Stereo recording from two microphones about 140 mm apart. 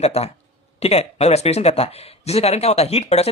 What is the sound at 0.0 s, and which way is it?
Speech, 50° left (ahead or behind).